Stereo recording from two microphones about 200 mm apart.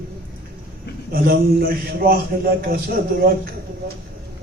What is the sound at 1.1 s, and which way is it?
Music, 50° right (ahead or behind).